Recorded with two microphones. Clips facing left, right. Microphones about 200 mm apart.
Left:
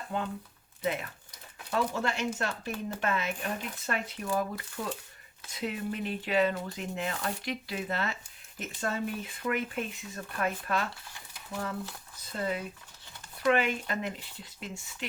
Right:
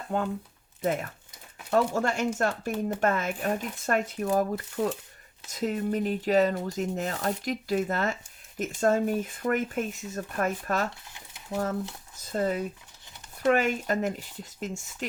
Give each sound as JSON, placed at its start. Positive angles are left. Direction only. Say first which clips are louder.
{"t": 0.1, "sound": "speech", "louder": "right 6 dB", "side_deg": -50}